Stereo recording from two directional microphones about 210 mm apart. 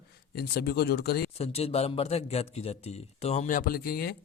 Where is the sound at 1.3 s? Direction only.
30° left (ahead or behind).